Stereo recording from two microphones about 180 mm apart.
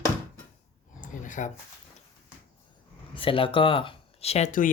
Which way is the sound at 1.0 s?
45° left (ahead or behind).